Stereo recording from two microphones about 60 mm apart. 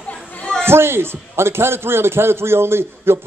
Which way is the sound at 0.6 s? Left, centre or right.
Right.